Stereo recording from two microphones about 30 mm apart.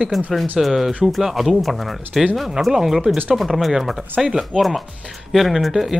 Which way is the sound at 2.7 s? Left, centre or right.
Centre.